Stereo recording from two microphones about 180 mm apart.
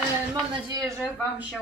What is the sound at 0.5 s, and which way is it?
Speech, 20° right (ahead or behind).